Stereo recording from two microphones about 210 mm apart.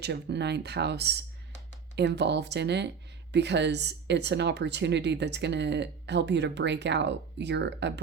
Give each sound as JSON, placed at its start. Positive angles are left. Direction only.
{"t": 0.0, "sound": "speech", "side_deg": -55}